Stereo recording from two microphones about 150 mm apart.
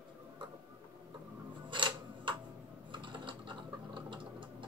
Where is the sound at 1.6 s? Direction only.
35° right (ahead or behind).